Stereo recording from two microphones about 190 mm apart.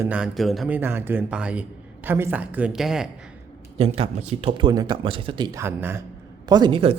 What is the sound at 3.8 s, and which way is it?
Speech, 30° right (ahead or behind).